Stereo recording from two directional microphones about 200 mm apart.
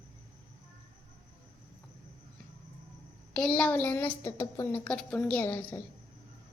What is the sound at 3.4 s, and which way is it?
A woman's voice, 5° left (ahead or behind).